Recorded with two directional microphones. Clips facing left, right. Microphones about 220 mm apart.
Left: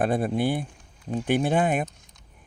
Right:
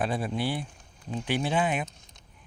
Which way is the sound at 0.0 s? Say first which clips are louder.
Left 6 dB; 50° left (ahead or behind).